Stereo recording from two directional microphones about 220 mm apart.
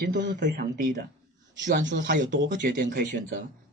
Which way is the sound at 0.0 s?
50° right (ahead or behind).